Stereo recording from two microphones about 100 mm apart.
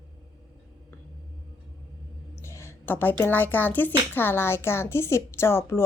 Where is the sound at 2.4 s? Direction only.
25° left (ahead or behind).